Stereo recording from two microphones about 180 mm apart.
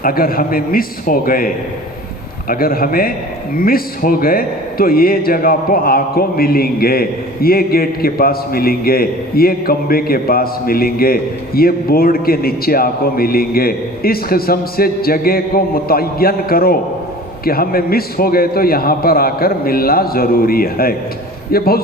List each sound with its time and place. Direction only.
0.0 s a man's voice: 55° left (ahead or behind)
2.5 s a man's voice: 55° left (ahead or behind)